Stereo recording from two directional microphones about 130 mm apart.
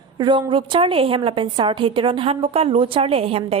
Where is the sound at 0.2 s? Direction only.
35° right (ahead or behind).